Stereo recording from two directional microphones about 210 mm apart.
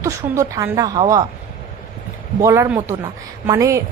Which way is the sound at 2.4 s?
15° right (ahead or behind).